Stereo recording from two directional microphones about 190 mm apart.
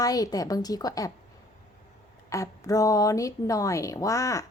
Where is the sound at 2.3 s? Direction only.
15° left (ahead or behind).